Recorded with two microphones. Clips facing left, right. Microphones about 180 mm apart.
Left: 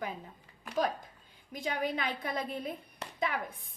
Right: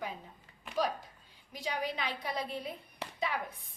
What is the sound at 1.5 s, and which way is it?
A woman's voice, 50° left (ahead or behind).